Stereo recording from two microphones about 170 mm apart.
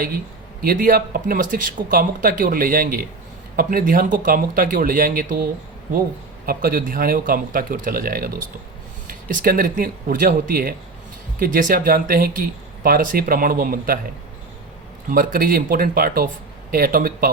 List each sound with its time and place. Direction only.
0.6 s speech: 55° right (ahead or behind)
15.1 s speech: 55° right (ahead or behind)